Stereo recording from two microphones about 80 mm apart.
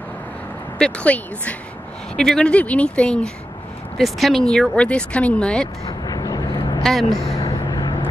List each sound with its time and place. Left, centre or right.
0.7 s speech: centre
4.0 s speech: centre
5.9 s vehicle: left
6.8 s speech: centre
7.4 s vehicle: left